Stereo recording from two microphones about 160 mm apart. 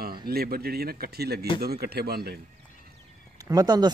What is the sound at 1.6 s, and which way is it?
Speech, 80° right.